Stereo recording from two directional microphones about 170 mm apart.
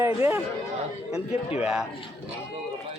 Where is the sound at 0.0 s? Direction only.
15° right (ahead or behind).